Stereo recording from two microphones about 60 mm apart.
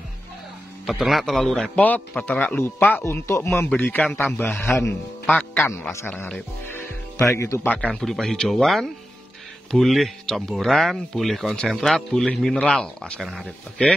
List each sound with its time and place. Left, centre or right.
0.8 s speech: centre
1.8 s a man's voice: left
3.0 s speech: left
3.6 s a man's voice: left
7.2 s speech: left
7.6 s speech: left
7.9 s speech: centre
12.7 s speech: centre
13.2 s speech: centre
13.8 s speech: centre